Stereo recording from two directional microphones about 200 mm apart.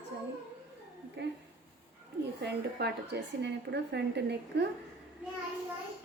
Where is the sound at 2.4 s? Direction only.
60° right (ahead or behind).